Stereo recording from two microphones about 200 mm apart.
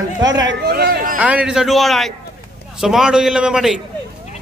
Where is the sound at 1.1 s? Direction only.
5° right (ahead or behind).